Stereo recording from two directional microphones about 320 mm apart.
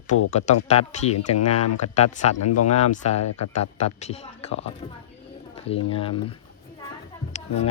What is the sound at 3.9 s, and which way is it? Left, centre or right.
Speech, centre.